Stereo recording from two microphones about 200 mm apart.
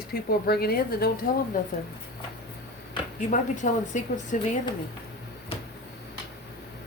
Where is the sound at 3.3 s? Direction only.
40° left (ahead or behind).